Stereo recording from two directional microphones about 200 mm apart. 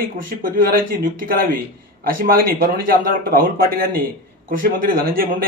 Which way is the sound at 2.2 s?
45° right (ahead or behind).